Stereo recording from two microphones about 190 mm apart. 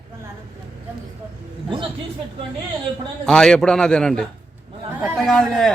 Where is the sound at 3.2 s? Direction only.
5° left (ahead or behind).